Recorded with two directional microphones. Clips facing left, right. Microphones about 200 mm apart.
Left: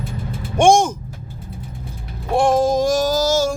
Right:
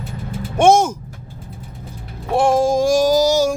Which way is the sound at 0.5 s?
5° right (ahead or behind).